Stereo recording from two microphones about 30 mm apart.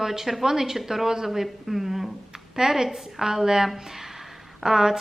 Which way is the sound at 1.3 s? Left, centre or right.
Centre.